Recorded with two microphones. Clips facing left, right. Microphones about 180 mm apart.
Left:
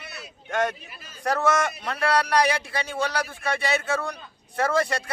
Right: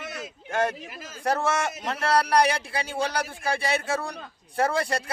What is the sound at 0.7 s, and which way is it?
Speech, 90° right.